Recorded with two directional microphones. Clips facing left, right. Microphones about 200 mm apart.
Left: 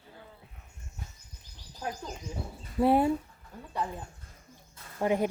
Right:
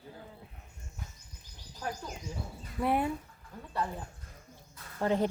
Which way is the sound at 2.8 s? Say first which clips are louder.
Left 6 dB; 30° left (ahead or behind).